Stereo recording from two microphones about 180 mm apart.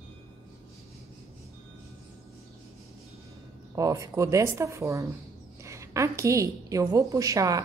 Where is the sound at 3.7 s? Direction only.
20° right (ahead or behind).